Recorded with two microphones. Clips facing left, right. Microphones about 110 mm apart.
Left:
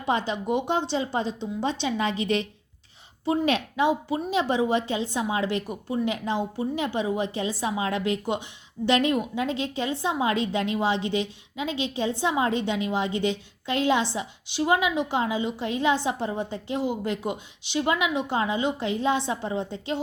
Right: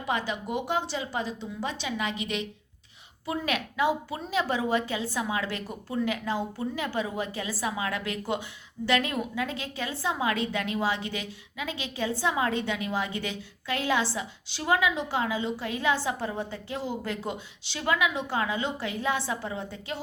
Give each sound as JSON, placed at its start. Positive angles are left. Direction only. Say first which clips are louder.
{"t": 0.0, "sound": "a woman's voice", "louder": "left 4 dB", "side_deg": 25}